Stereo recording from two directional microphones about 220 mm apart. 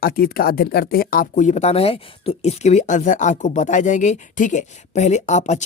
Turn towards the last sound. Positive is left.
turn(degrees=30)  # may be behind; listen again after turning